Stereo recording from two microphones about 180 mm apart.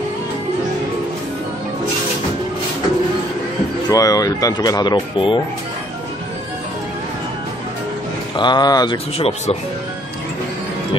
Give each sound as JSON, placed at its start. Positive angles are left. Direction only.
{"t": 3.9, "sound": "speech", "side_deg": 20}
{"t": 8.4, "sound": "speech", "side_deg": 25}